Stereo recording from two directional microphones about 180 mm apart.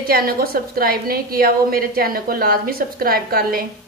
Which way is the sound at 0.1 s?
55° right (ahead or behind).